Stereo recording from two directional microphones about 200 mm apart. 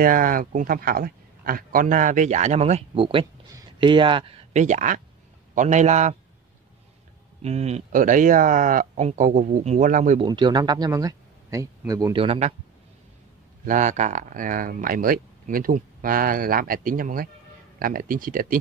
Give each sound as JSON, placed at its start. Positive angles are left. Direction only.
{"t": 0.0, "sound": "speech", "side_deg": -45}
{"t": 7.4, "sound": "speech", "side_deg": -30}
{"t": 10.2, "sound": "speech", "side_deg": -20}
{"t": 13.7, "sound": "speech", "side_deg": -35}